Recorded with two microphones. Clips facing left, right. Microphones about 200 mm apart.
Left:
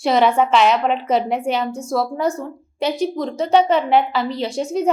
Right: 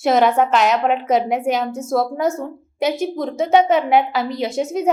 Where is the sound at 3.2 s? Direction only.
5° right (ahead or behind).